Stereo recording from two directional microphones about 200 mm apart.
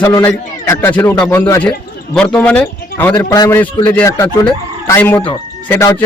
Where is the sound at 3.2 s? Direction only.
20° left (ahead or behind).